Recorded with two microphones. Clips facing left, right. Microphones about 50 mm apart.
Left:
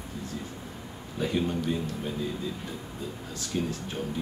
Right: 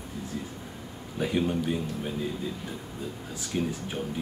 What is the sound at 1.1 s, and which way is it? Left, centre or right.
Speech, centre.